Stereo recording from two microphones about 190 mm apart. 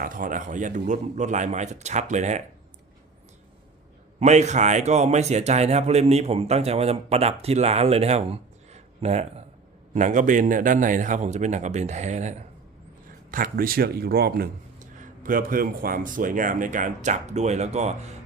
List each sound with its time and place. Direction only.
0.0 s speech: 45° right (ahead or behind)
4.2 s speech: 35° right (ahead or behind)
13.3 s speech: 50° right (ahead or behind)